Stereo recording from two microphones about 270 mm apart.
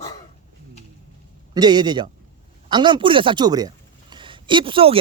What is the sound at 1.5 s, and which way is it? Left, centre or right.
Speech, centre.